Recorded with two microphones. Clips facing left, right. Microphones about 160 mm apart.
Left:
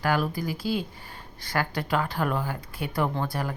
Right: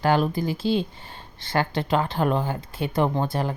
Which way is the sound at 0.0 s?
25° right (ahead or behind).